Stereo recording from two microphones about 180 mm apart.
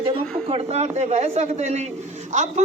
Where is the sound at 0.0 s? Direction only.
30° right (ahead or behind).